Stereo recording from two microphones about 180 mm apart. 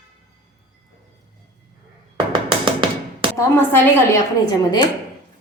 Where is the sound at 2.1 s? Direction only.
25° right (ahead or behind).